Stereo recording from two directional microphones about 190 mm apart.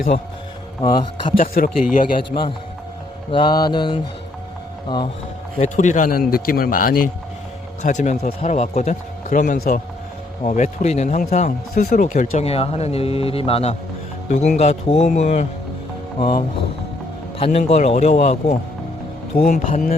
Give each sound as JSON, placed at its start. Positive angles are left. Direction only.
{"t": 0.8, "sound": "mantra", "side_deg": 25}
{"t": 1.4, "sound": "a man's voice", "side_deg": 45}
{"t": 3.3, "sound": "mantra", "side_deg": 20}
{"t": 5.5, "sound": "a man's voice", "side_deg": 40}
{"t": 17.4, "sound": "speech", "side_deg": 35}